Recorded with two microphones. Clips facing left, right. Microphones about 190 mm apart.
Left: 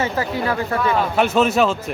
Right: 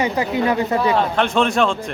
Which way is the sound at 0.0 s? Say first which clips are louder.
Right 3 dB; 20° right (ahead or behind).